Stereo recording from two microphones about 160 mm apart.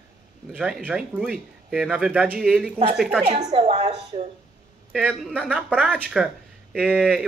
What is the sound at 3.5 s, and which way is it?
Speech, 40° right (ahead or behind).